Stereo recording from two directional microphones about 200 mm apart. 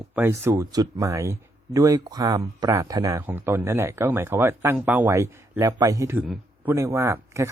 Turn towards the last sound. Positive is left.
turn(degrees=-15)  # may be behind; listen again after turning